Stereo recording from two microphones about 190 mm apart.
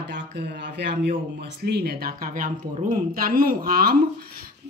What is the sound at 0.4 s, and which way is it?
A woman's voice, 65° right (ahead or behind).